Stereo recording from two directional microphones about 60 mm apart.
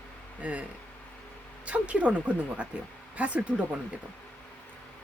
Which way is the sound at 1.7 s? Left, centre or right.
Right.